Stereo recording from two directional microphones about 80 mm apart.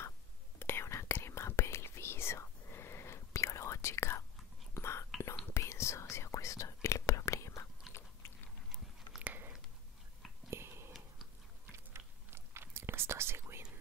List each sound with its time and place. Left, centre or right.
0.6 s whispering: left
7.9 s biting: left
8.6 s biting: centre
9.2 s biting: right
10.5 s whispering: right
11.7 s chewing: right